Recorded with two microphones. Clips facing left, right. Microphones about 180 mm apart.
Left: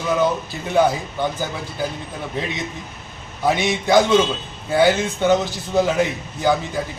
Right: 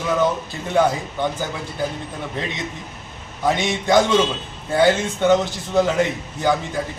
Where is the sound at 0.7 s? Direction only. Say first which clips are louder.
Left 1 dB; 5° left (ahead or behind).